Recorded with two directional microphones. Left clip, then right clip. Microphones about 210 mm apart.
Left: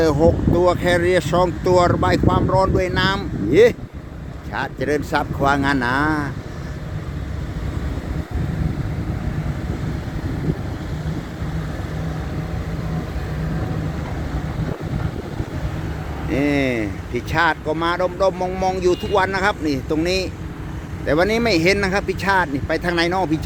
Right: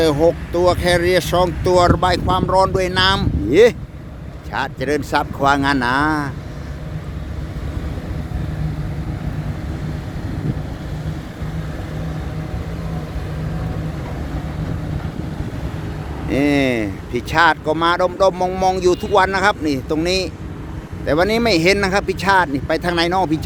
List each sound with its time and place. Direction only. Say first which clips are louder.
0.0 s speech: right 1 dB; centre (ahead or behind)
16.3 s speech: right 3 dB; 15° right (ahead or behind)